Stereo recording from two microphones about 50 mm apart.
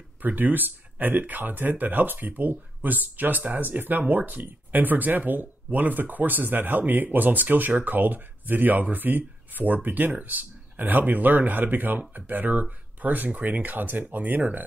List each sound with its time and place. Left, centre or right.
0.2 s speech: right